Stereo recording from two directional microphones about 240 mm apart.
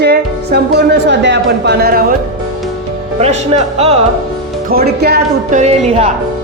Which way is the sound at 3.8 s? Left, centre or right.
Right.